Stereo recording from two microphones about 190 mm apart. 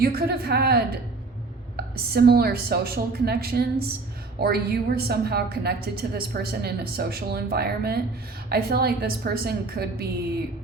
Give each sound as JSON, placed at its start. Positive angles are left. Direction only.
{"t": 0.0, "sound": "a woman's voice", "side_deg": -55}